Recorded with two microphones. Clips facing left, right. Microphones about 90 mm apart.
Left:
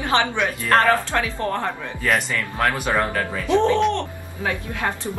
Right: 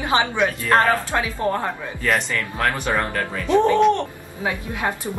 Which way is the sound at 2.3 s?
5° left (ahead or behind).